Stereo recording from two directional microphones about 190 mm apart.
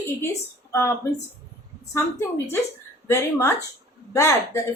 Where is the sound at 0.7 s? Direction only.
15° left (ahead or behind).